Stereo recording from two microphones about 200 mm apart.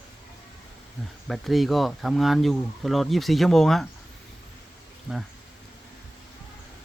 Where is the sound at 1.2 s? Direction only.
Centre (ahead or behind).